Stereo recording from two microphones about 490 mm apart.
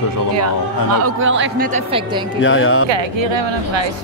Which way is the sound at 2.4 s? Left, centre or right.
Left.